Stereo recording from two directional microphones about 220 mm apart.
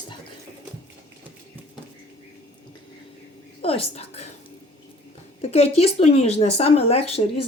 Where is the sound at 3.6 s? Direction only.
25° left (ahead or behind).